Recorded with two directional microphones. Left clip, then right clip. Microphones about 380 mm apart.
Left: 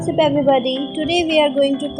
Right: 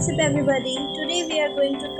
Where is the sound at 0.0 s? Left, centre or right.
Centre.